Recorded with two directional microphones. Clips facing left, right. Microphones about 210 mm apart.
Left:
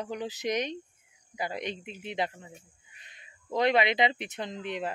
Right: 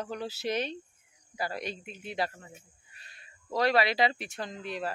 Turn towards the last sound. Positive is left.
turn(degrees=20)  # may be behind; listen again after turning